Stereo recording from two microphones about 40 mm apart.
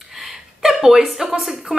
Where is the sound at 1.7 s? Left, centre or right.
Centre.